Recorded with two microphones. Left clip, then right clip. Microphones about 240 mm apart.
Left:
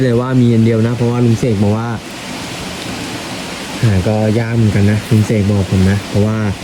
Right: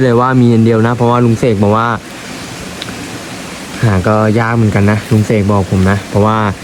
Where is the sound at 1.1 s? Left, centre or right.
Centre.